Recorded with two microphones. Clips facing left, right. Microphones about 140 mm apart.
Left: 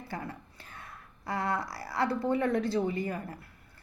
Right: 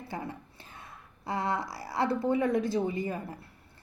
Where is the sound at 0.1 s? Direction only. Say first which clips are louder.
Right 1 dB; 20° right (ahead or behind).